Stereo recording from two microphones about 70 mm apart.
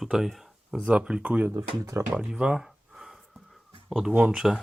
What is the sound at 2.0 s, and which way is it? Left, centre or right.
Speech, right.